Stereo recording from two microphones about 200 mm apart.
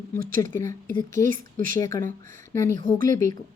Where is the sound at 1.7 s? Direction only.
15° left (ahead or behind).